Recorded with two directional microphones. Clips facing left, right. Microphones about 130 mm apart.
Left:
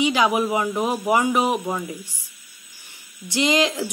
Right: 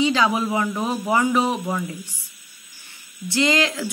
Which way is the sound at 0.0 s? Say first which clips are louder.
Even; 15° left (ahead or behind).